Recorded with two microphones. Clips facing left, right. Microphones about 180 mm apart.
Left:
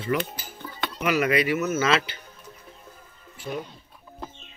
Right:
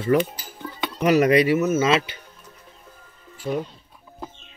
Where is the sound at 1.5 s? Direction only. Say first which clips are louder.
Right 4 dB; 20° right (ahead or behind).